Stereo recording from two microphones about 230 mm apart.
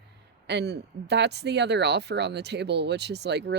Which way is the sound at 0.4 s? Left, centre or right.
Right.